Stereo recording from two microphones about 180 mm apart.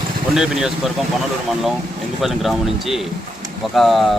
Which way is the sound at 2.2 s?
Centre (ahead or behind).